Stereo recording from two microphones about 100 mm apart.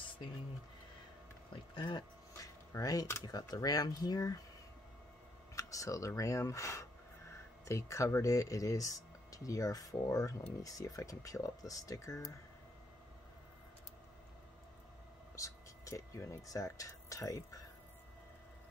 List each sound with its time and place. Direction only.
1.5 s speech: 50° left (ahead or behind)
2.3 s a sound: 35° left (ahead or behind)
3.3 s speech: 40° left (ahead or behind)
5.6 s speech: 35° left (ahead or behind)
15.3 s speech: 30° left (ahead or behind)